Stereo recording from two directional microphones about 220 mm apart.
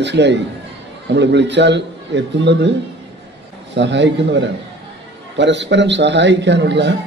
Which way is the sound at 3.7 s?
55° right (ahead or behind).